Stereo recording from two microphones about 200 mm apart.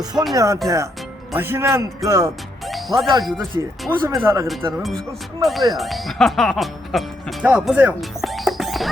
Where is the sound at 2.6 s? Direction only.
Centre (ahead or behind).